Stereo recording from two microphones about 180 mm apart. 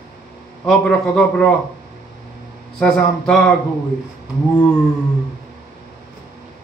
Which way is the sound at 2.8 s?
Centre (ahead or behind).